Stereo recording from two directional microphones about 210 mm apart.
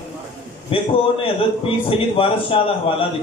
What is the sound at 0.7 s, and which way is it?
Speech, 25° left (ahead or behind).